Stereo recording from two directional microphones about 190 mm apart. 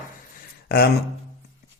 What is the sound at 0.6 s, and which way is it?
Speech, 55° left (ahead or behind).